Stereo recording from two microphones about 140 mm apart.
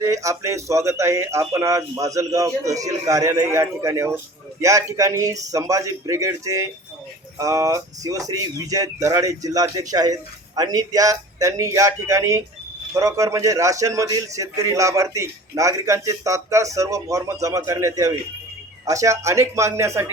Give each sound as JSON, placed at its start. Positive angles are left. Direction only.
{"t": 0.0, "sound": "a man's voice", "side_deg": -25}